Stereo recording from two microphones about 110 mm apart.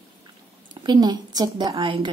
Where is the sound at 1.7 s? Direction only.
55° right (ahead or behind).